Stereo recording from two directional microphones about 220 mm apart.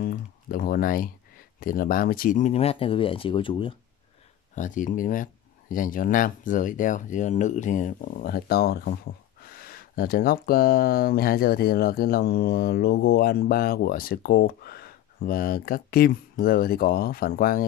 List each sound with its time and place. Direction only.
0.0 s a sound: 40° left (ahead or behind)
1.6 s speech: 40° left (ahead or behind); by 3.7 s 25° left (ahead or behind)
4.6 s speech: 35° left (ahead or behind)